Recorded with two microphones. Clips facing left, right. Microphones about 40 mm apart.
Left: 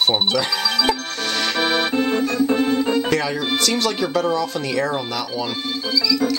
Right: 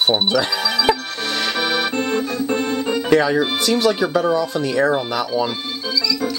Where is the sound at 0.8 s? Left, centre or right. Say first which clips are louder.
Right 2 dB; centre.